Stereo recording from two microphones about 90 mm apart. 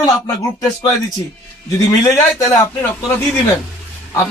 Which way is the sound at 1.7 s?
40° left (ahead or behind).